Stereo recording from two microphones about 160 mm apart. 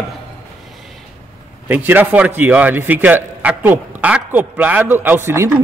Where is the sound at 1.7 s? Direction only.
10° right (ahead or behind).